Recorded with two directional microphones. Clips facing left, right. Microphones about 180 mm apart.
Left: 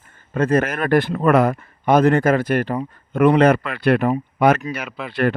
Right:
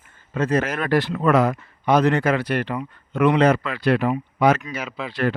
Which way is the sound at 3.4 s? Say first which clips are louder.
Left 3 dB; 60° left (ahead or behind).